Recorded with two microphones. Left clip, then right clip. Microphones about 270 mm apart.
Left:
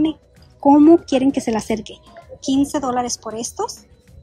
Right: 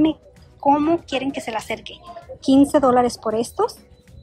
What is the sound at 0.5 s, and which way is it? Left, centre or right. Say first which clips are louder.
Speech: left 6 dB; left.